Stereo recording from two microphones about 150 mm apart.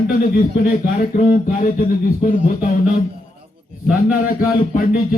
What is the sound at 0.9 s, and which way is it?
Speech, 55° left (ahead or behind).